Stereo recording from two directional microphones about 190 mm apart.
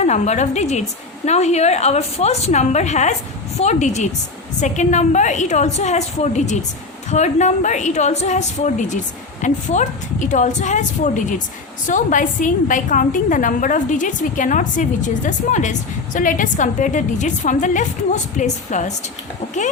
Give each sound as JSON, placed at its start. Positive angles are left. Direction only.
{"t": 0.0, "sound": "a woman's voice", "side_deg": 35}